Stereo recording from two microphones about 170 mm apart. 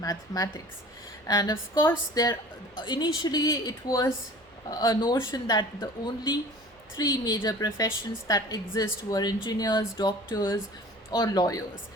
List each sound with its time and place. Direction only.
0.0 s a woman's voice: 20° left (ahead or behind)